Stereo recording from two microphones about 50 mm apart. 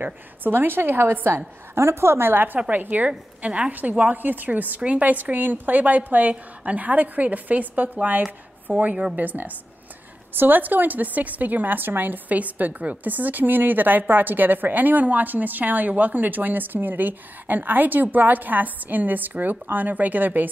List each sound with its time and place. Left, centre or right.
0.0 s a woman's voice: right
4.2 s a woman's voice: right